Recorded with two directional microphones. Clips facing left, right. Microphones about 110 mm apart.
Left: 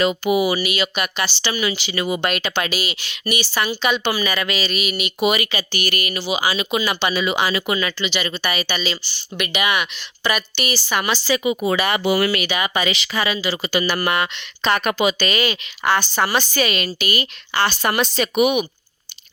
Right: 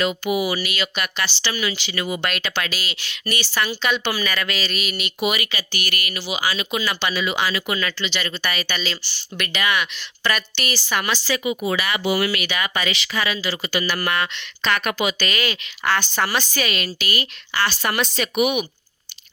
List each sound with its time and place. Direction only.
0.0 s speech: 25° left (ahead or behind)
5.2 s speech: 25° left (ahead or behind); by 11.1 s 10° left (ahead or behind)
11.1 s speech: 20° left (ahead or behind)
11.9 s speech: 45° left (ahead or behind)
12.3 s speech: 25° left (ahead or behind)
14.7 s speech: 30° left (ahead or behind)
16.6 s speech: 25° left (ahead or behind)